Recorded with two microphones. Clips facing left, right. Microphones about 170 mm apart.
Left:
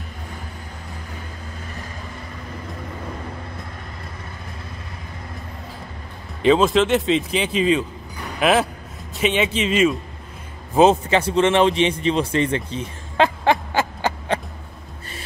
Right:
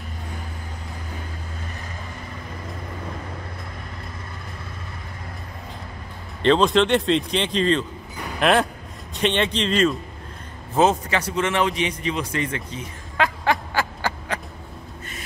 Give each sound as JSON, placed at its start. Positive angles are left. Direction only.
{"t": 6.4, "sound": "speech", "side_deg": 5}
{"t": 10.8, "sound": "a man's voice", "side_deg": 20}